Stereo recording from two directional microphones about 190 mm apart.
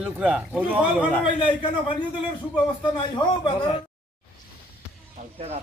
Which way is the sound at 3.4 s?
25° left (ahead or behind).